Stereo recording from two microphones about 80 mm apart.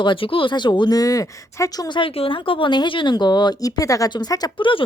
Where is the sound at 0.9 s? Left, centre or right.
Left.